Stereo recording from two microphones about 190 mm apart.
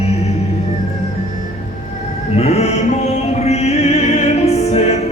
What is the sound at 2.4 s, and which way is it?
Music, 35° left (ahead or behind).